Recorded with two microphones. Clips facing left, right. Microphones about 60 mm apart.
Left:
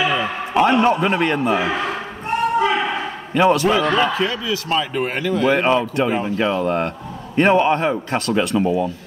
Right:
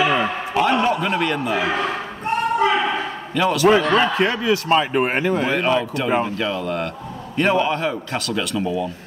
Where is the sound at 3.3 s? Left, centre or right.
Left.